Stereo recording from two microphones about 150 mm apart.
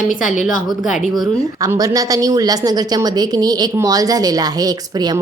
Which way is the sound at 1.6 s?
20° right (ahead or behind).